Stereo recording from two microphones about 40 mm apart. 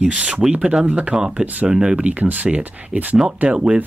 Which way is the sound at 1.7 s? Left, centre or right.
Right.